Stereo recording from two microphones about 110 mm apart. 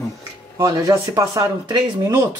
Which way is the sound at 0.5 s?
40° right (ahead or behind).